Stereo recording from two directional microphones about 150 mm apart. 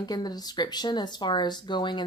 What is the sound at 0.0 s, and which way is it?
Speech, 25° left (ahead or behind).